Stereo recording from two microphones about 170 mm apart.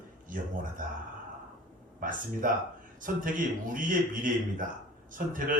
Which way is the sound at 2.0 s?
55° right (ahead or behind).